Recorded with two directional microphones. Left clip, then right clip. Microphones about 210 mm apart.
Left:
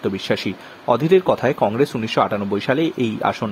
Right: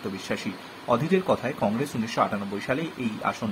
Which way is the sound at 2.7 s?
40° left (ahead or behind).